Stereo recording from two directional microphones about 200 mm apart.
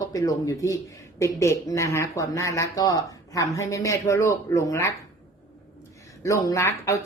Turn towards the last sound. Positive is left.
turn(degrees=15)  # may be behind; listen again after turning